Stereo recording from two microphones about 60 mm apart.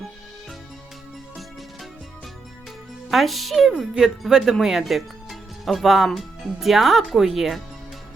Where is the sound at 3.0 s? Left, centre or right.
Centre.